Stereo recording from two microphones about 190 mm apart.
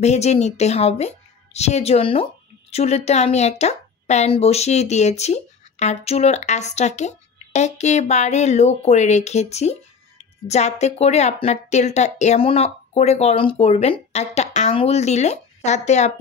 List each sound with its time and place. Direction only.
0.0 s a woman's voice: 35° left (ahead or behind)